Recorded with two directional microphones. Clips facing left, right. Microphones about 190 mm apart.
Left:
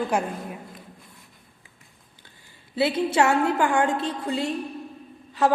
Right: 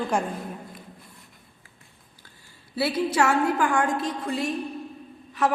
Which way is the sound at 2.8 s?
25° left (ahead or behind).